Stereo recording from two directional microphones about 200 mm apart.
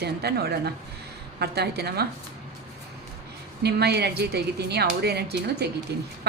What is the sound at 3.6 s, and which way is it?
A woman's voice, 55° right (ahead or behind).